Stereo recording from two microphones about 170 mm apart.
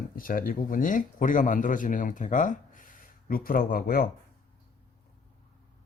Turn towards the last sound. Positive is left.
turn(degrees=60)  # may be behind; listen again after turning